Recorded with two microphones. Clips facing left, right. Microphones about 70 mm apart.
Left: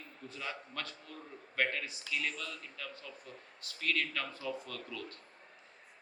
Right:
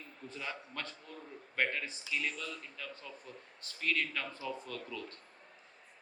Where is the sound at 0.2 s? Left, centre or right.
Right.